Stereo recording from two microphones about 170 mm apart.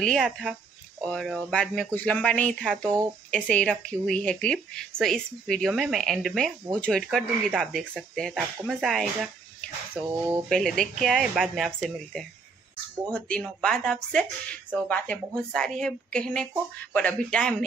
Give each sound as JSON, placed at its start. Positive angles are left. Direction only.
{"t": 0.0, "sound": "speech", "side_deg": 0}
{"t": 9.9, "sound": "speech", "side_deg": -15}
{"t": 10.5, "sound": "speech", "side_deg": 5}